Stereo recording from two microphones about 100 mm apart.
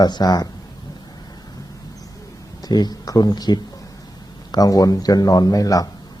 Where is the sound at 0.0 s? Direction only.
40° left (ahead or behind).